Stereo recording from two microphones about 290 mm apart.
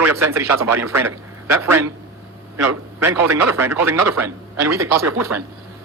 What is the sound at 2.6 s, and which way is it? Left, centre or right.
A man's voice, right.